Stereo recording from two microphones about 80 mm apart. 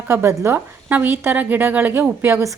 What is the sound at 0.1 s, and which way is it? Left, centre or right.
A woman's voice, right.